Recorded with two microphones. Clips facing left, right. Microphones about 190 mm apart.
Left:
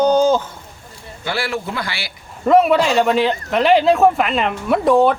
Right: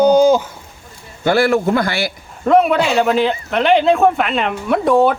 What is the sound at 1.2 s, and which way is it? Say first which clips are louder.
Speech: right 10 dB; 45° right (ahead or behind).